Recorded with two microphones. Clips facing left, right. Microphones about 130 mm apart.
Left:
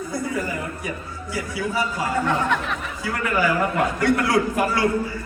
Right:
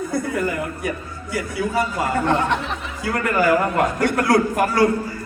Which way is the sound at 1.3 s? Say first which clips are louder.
Right 3 dB; 55° right (ahead or behind).